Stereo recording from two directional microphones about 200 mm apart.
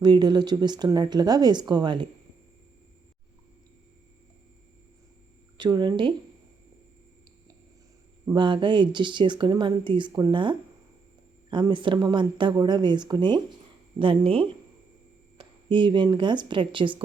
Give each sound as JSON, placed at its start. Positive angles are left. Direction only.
{"t": 0.0, "sound": "speech", "side_deg": -20}
{"t": 5.5, "sound": "speech", "side_deg": -20}
{"t": 8.3, "sound": "speech", "side_deg": -25}